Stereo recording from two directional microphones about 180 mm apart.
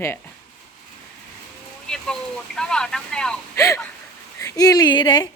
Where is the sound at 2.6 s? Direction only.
5° left (ahead or behind).